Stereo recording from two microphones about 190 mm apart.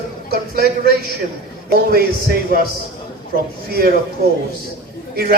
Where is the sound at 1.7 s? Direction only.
55° right (ahead or behind).